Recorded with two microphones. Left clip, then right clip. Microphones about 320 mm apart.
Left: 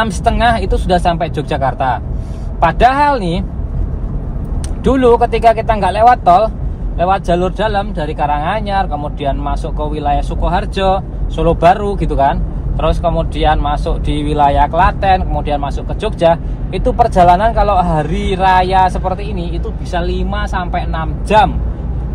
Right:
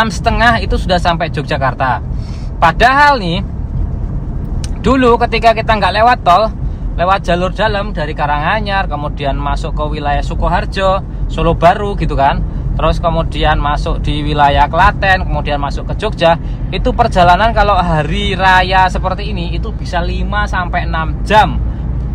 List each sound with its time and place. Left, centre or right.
0.0 s speech: right
4.8 s speech: right